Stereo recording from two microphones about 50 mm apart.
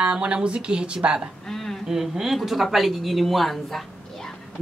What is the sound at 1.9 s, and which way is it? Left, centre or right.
Speech, centre.